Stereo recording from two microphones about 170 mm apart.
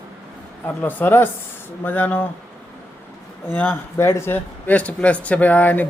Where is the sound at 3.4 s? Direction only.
10° left (ahead or behind).